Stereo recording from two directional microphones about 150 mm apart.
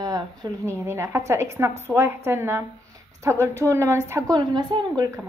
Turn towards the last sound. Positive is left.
turn(degrees=-25)  # may be behind; listen again after turning